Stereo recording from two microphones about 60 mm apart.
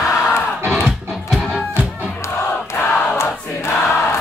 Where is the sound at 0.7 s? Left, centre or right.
Centre.